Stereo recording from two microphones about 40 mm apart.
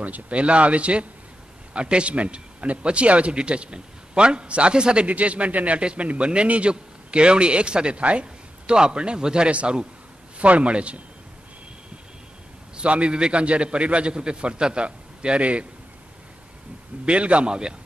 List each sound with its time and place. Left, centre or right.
0.0 s a man's voice: right
5.0 s speech: right
5.8 s a man's voice: right
12.7 s a man's voice: right
17.0 s a man's voice: right